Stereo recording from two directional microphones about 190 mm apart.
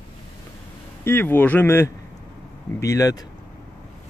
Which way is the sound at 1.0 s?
10° left (ahead or behind).